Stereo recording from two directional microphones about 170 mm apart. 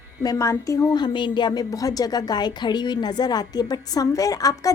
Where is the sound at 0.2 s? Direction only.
20° left (ahead or behind).